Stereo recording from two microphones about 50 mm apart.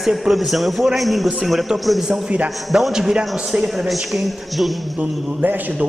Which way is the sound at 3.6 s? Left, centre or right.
Centre.